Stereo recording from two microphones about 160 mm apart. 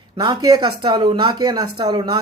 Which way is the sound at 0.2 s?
25° right (ahead or behind).